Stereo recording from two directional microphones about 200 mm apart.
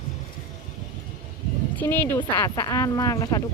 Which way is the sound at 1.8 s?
10° left (ahead or behind).